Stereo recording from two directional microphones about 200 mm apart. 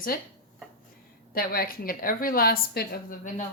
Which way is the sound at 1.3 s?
45° left (ahead or behind).